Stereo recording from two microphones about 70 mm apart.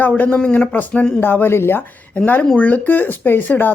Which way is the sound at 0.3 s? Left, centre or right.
Centre.